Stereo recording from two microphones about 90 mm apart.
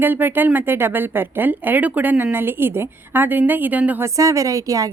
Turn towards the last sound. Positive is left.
turn(degrees=-40)  # may be behind; listen again after turning